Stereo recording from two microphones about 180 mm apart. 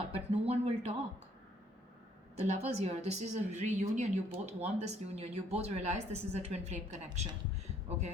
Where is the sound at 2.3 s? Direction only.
40° right (ahead or behind).